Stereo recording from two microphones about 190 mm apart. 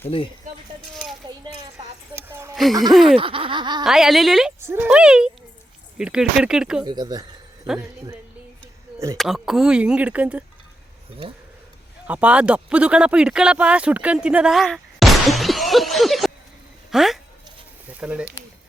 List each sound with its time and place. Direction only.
1.8 s a sound: 10° right (ahead or behind)
2.9 s speech: centre (ahead or behind)
3.2 s laughter: 25° right (ahead or behind)
3.8 s speech: centre (ahead or behind)
4.6 s speech: 10° right (ahead or behind)
6.8 s speech: 20° right (ahead or behind)
9.1 s speech: centre (ahead or behind)
12.0 s speech: 5° right (ahead or behind)